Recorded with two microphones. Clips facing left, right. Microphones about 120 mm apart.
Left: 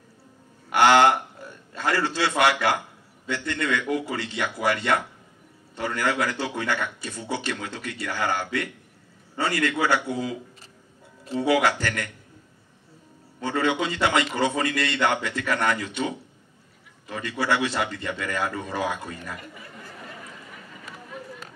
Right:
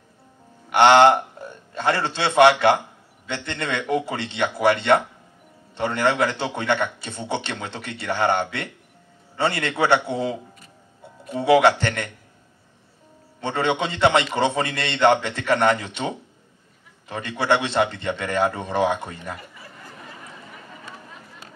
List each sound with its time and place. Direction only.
0.7 s a man's voice: 25° right (ahead or behind)
11.4 s a man's voice: 25° right (ahead or behind)
13.4 s a man's voice: 25° right (ahead or behind)